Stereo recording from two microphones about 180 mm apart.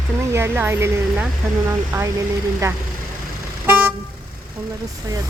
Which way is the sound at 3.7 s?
10° right (ahead or behind).